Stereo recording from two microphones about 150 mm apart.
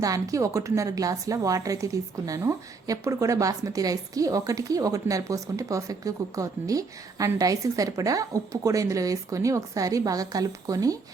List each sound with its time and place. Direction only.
0.0 s a woman's voice: 20° right (ahead or behind)